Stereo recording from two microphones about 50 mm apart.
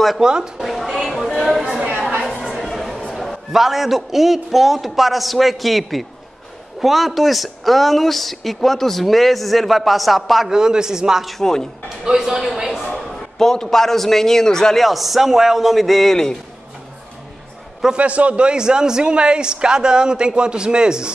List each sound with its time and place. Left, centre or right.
0.2 s a man's voice: centre
0.7 s speech: centre
2.4 s a sound: centre
3.1 s speech: centre
10.5 s a man's voice: centre
11.2 s speech: centre
12.2 s a man's voice: centre
12.9 s a man's voice: centre
14.9 s speech: centre
17.9 s a man's voice: right